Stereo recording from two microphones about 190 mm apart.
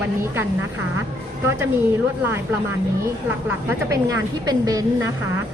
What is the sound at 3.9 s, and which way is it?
Speech, 20° right (ahead or behind).